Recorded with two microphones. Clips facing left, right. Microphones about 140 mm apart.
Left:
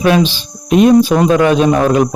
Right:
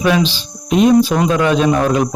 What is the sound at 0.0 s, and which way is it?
Speech, 55° left (ahead or behind).